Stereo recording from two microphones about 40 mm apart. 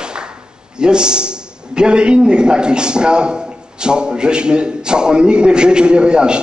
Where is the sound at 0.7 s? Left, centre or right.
Right.